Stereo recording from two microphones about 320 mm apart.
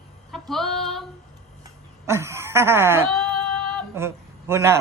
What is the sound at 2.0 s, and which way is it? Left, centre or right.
A man's voice, centre.